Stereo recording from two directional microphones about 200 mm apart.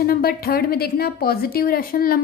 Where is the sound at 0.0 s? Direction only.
50° left (ahead or behind).